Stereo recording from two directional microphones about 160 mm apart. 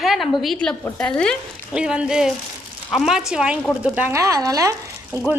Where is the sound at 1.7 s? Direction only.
5° right (ahead or behind); by 5.3 s 20° right (ahead or behind).